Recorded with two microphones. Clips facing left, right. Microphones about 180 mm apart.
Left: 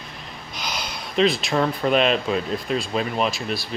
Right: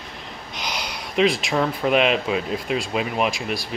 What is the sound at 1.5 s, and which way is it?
Speech, 5° right (ahead or behind).